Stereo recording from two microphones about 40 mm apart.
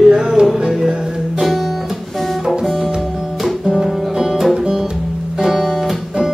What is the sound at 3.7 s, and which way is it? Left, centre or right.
Music, centre.